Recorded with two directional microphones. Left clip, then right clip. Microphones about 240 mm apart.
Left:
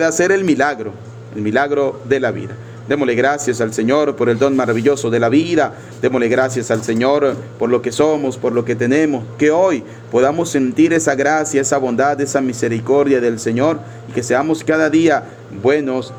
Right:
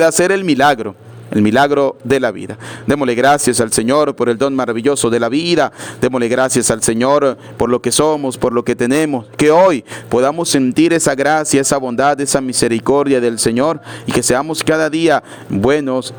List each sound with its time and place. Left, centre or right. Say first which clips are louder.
0.0 s speech: right 2 dB; right
11.6 s speech: right 1 dB; right